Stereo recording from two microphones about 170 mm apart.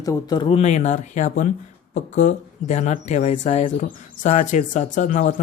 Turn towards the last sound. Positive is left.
turn(degrees=50)  # may be behind; listen again after turning